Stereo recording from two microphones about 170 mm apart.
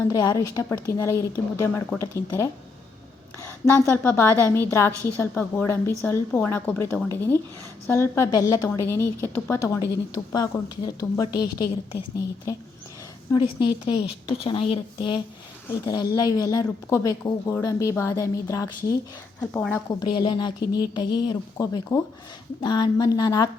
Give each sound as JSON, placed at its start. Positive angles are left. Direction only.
{"t": 0.1, "sound": "a woman's voice", "side_deg": 20}
{"t": 13.3, "sound": "a woman's voice", "side_deg": 30}